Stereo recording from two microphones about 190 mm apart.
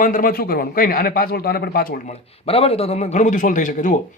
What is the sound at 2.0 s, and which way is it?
Speech, 30° left (ahead or behind).